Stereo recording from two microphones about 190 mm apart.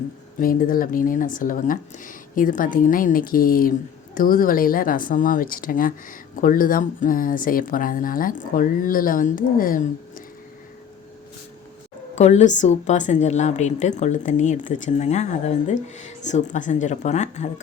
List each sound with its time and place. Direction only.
0.3 s speech: 45° left (ahead or behind)
12.1 s a woman's voice: 35° left (ahead or behind)